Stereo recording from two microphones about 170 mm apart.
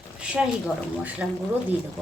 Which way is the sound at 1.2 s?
5° right (ahead or behind).